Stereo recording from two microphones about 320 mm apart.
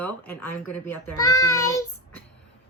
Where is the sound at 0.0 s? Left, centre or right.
Centre.